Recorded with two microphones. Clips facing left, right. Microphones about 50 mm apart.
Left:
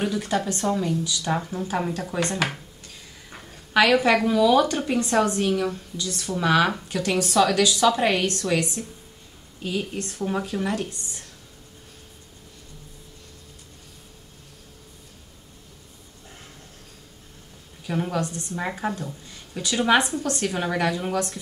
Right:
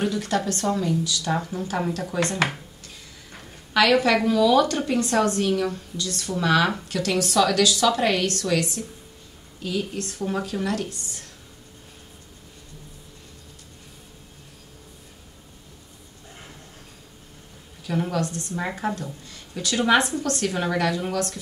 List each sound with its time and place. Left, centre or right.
0.0 s a woman's voice: centre
1.0 s a woman's voice: centre
1.3 s a woman's voice: centre
2.3 s a woman's voice: centre
3.7 s a woman's voice: centre
7.0 s a woman's voice: left
10.2 s a woman's voice: centre
17.8 s a woman's voice: centre
18.2 s a woman's voice: left
18.6 s a woman's voice: centre
20.4 s a woman's voice: centre